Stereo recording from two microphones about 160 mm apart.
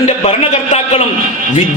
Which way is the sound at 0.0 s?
45° left (ahead or behind).